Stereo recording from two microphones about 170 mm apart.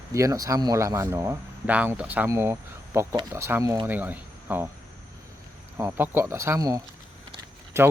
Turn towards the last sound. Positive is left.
turn(degrees=-15)  # may be behind; listen again after turning